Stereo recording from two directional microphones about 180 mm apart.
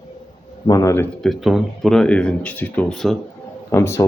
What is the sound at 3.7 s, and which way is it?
Speech, 15° left (ahead or behind).